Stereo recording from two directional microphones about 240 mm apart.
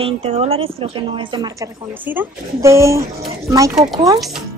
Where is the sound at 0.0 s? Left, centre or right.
Right.